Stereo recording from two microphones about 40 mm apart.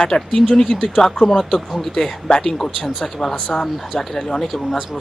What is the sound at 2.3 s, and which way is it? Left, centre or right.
Speech, left.